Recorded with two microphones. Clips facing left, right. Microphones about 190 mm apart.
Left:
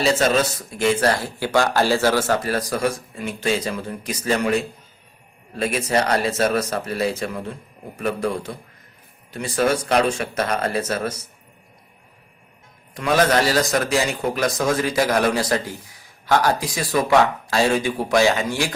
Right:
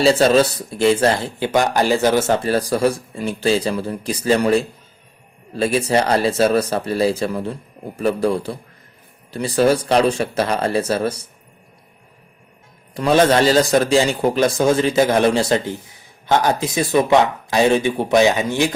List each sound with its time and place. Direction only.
0.0 s speech: 35° right (ahead or behind)
12.9 s a man's voice: 30° right (ahead or behind)